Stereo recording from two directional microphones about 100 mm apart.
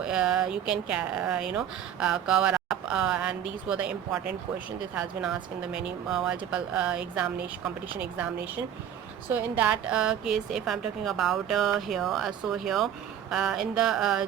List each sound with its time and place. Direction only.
0.0 s a woman's voice: 5° right (ahead or behind)
9.3 s a woman's voice: 15° right (ahead or behind)